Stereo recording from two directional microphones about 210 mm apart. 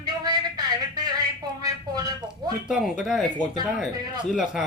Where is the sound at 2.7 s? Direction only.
5° right (ahead or behind).